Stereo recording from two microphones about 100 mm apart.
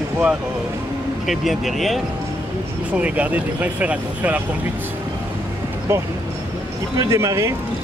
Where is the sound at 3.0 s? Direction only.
15° right (ahead or behind).